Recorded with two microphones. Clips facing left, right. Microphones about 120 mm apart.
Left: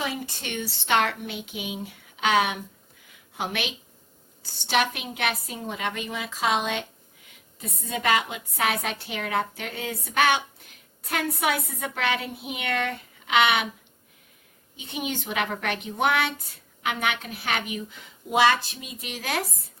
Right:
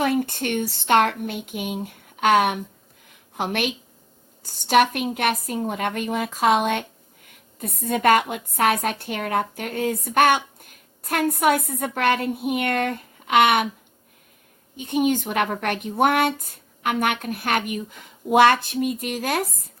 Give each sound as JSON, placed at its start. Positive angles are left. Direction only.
{"t": 0.0, "sound": "a woman's voice", "side_deg": -55}
{"t": 14.8, "sound": "a woman's voice", "side_deg": -45}